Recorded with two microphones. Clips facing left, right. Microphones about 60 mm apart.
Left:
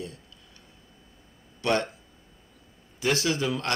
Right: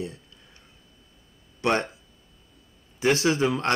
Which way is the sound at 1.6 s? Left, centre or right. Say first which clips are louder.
Right 2 dB; right.